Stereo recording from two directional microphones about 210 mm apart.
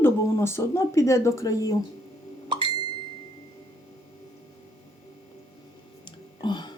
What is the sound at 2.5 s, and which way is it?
Plop, 25° right (ahead or behind).